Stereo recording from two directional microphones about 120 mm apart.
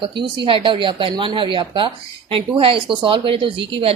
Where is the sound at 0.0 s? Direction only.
45° right (ahead or behind).